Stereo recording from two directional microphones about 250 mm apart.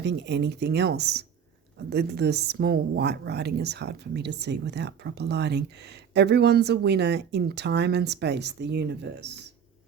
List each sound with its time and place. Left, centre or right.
0.0 s a woman's voice: right